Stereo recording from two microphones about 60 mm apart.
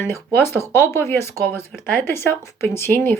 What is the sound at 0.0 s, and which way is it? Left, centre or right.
Speech, left.